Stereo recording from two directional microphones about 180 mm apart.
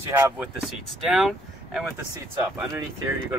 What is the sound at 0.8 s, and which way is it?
Speech, centre (ahead or behind).